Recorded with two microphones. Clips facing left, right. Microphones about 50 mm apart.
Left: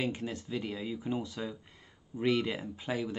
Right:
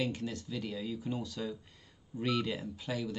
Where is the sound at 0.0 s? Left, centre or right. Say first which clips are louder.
Left 1 dB; left.